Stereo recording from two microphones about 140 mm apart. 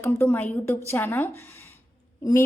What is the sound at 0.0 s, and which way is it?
A woman's voice, 15° left (ahead or behind).